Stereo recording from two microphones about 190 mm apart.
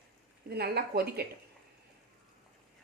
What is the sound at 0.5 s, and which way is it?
Speech, 55° right (ahead or behind).